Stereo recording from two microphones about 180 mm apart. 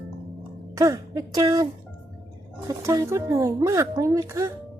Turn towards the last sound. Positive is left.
turn(degrees=-15)  # may be behind; listen again after turning